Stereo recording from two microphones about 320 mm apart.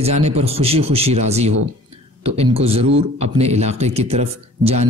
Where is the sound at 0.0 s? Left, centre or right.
Right.